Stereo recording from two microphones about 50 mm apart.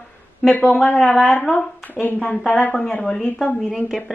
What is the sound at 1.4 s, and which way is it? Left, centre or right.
Speech, centre.